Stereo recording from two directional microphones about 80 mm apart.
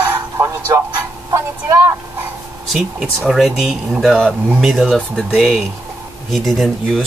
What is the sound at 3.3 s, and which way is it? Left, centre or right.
Speech, centre.